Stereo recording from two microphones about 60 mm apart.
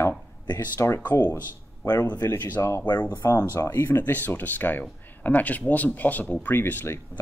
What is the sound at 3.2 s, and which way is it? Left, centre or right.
Speech, left.